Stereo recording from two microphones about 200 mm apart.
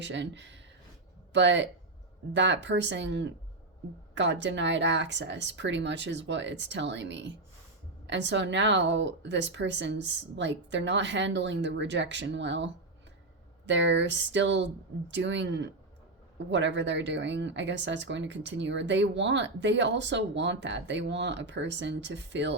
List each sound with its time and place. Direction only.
0.0 s speech: 65° right (ahead or behind)